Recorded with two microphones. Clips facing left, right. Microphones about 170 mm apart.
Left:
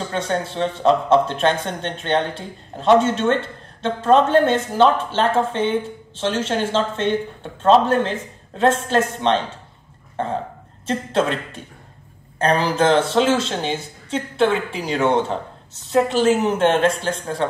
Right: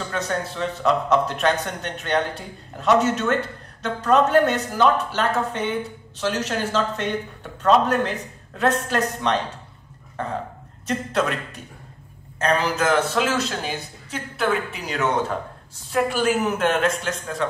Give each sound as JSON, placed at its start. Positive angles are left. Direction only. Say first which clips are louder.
{"t": 0.1, "sound": "speech", "louder": "left 3 dB", "side_deg": 30}